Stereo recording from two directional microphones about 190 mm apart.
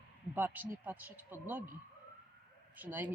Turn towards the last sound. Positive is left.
turn(degrees=-10)  # may be behind; listen again after turning